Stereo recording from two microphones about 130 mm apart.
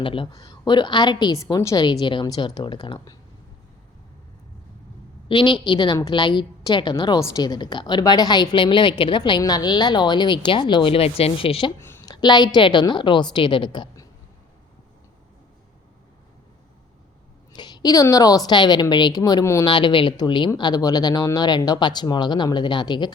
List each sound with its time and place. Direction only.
0.0 s a woman's voice: 40° left (ahead or behind)
0.3 s a woman's voice: 30° left (ahead or behind)
5.3 s a woman's voice: 35° left (ahead or behind)
11.8 s a sound: 20° left (ahead or behind)
12.0 s a woman's voice: 30° left (ahead or behind)
17.5 s a woman's voice: 35° left (ahead or behind)
19.6 s a woman's voice: 40° left (ahead or behind)